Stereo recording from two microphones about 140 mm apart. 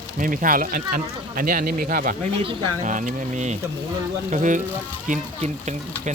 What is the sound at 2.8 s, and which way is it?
Speech, 65° right (ahead or behind).